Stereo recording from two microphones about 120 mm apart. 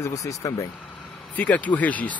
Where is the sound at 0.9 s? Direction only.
10° left (ahead or behind).